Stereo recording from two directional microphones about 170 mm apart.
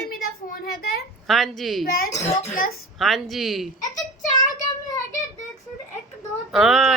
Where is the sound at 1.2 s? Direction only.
Centre (ahead or behind).